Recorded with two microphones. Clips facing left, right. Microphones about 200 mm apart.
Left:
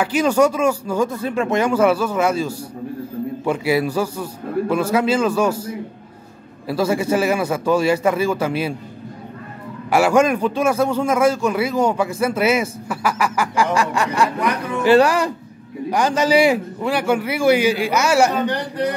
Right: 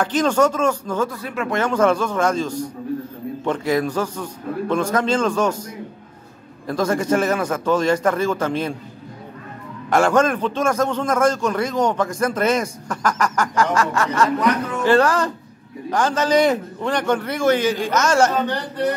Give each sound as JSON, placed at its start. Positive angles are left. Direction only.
{"t": 0.0, "sound": "a man's voice", "side_deg": 10}
{"t": 1.1, "sound": "speech", "side_deg": 25}
{"t": 1.6, "sound": "a man's voice", "side_deg": 10}
{"t": 9.8, "sound": "a man's voice", "side_deg": 10}